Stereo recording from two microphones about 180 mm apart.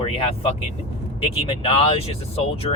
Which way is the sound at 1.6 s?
30° left (ahead or behind).